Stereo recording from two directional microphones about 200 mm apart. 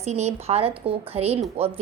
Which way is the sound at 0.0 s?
35° right (ahead or behind).